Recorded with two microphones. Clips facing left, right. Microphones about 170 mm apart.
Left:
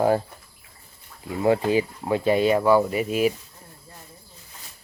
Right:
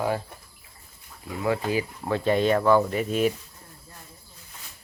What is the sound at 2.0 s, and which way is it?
Speech, 10° left (ahead or behind).